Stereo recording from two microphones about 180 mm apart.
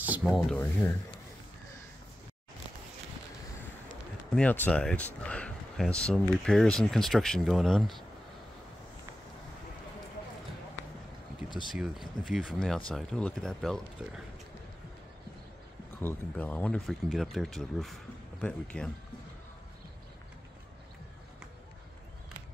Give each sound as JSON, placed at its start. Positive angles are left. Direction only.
{"t": 0.0, "sound": "speech", "side_deg": -5}
{"t": 4.4, "sound": "speech", "side_deg": 5}
{"t": 11.7, "sound": "speech", "side_deg": 0}
{"t": 16.0, "sound": "speech", "side_deg": 10}